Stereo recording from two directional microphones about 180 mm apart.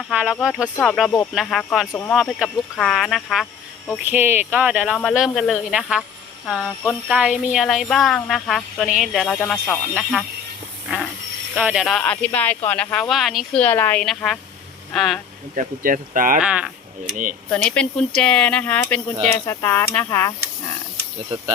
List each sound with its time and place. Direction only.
0.1 s speech: 5° right (ahead or behind)
3.9 s speech: 10° right (ahead or behind)
11.5 s speech: 5° right (ahead or behind)
15.5 s speech: 50° right (ahead or behind)
16.4 s speech: 5° right (ahead or behind)
17.5 s speech: 5° left (ahead or behind)